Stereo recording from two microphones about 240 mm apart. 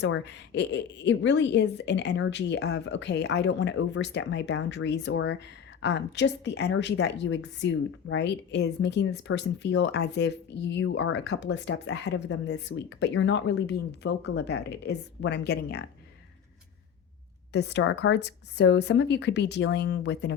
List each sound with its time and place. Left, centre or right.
0.0 s a woman's voice: left
17.5 s a woman's voice: left